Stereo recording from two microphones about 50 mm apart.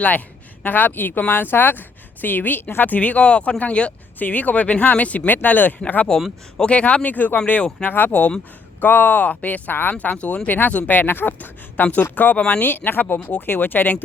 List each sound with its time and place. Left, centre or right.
0.6 s speech: left
4.2 s speech: left
6.1 s speech: centre
7.9 s speech: left
9.9 s speech: left
11.8 s speech: left